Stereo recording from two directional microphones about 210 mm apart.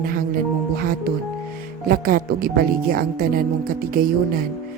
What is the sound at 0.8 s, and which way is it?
Speech, 45° right (ahead or behind).